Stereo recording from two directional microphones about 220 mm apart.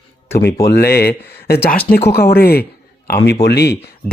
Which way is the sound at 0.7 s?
45° left (ahead or behind).